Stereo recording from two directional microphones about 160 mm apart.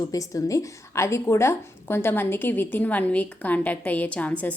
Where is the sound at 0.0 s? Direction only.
20° left (ahead or behind).